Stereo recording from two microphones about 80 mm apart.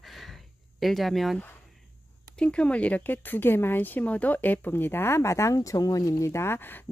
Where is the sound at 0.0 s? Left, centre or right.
Centre.